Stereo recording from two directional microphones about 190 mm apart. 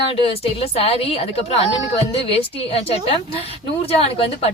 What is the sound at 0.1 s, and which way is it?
A woman's voice, 30° left (ahead or behind).